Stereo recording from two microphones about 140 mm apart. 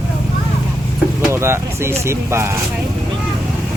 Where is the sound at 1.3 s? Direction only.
20° right (ahead or behind).